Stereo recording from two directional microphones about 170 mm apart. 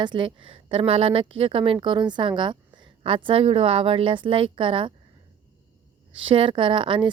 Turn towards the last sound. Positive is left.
turn(degrees=-30)  # may be behind; listen again after turning